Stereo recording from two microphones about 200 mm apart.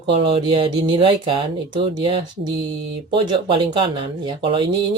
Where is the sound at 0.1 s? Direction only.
25° right (ahead or behind).